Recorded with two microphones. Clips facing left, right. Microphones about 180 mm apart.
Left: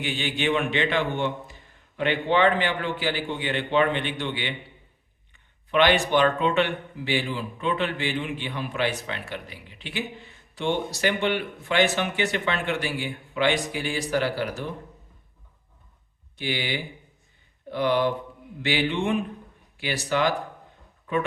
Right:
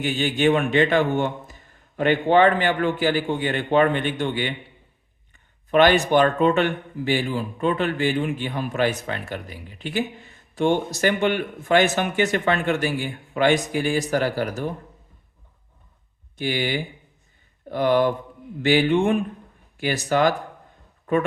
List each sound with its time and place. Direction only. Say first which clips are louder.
0.0 s speech: right 7 dB; 45° right (ahead or behind)
16.4 s speech: right 5 dB; 45° right (ahead or behind)